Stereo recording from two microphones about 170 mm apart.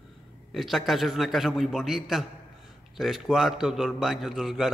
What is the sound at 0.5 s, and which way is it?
A man's voice, centre (ahead or behind).